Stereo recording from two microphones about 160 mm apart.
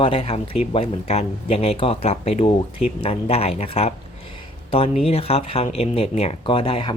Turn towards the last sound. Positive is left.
turn(degrees=35)  # may be behind; listen again after turning